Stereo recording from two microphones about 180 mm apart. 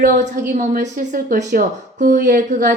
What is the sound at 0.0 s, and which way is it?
Speech, 45° right (ahead or behind).